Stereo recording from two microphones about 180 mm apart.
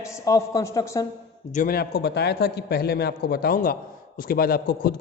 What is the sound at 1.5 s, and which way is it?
Speech, 55° left (ahead or behind).